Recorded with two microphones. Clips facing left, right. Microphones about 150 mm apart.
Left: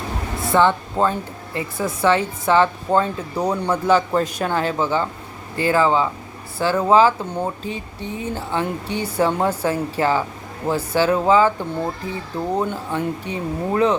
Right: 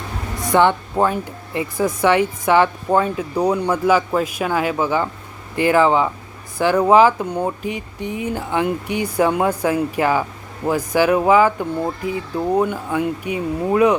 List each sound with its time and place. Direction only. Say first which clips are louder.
0.3 s speech: right 2 dB; 15° right (ahead or behind)
12.5 s speech: right 4 dB; 10° right (ahead or behind)